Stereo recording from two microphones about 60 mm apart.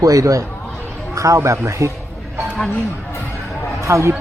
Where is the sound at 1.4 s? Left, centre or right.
Right.